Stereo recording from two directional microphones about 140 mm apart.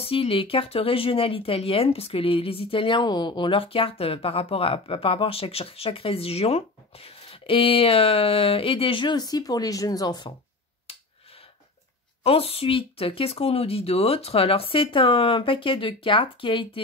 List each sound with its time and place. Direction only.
0.0 s speech: 40° left (ahead or behind)
12.2 s speech: 45° left (ahead or behind)